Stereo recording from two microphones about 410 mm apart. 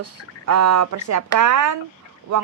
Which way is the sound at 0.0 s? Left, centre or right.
Right.